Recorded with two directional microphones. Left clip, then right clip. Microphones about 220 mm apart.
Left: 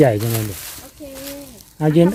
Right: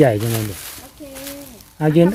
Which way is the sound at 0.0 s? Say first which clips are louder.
Even; 5° right (ahead or behind).